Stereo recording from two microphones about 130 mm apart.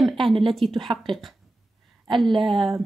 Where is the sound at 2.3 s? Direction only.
35° right (ahead or behind).